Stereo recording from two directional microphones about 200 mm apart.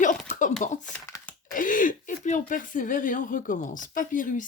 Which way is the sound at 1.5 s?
40° left (ahead or behind).